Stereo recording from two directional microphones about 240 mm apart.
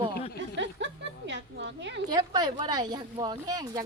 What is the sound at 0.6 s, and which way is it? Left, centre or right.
A woman's voice, right.